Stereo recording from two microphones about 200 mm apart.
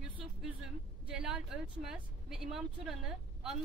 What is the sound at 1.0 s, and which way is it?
A woman's voice, 5° right (ahead or behind).